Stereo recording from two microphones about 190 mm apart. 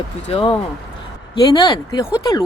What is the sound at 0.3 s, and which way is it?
Speech, 30° left (ahead or behind).